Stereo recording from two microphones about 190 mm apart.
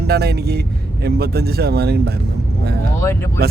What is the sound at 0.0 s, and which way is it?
Speech, 55° right (ahead or behind).